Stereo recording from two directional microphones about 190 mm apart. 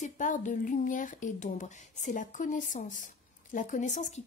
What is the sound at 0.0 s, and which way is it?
Speech, 45° left (ahead or behind).